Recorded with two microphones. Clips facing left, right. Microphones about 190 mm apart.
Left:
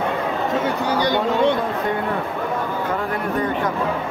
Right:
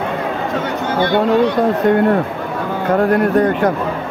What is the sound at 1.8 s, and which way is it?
Speech, 75° right (ahead or behind).